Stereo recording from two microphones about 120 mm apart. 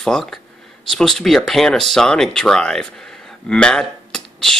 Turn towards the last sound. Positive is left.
turn(degrees=5)  # may be behind; listen again after turning